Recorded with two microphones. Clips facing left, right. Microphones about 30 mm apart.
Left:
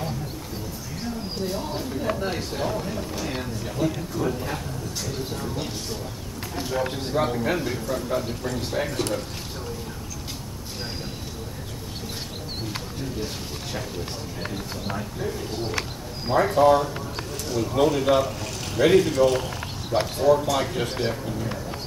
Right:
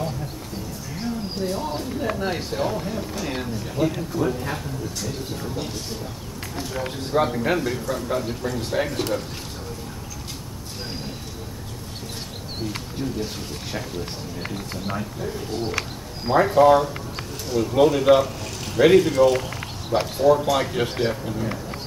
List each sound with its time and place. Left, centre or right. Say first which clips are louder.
0.9 s speech: right 3 dB; centre
7.2 s speech: right 3 dB; centre
14.5 s speech: right 3 dB; centre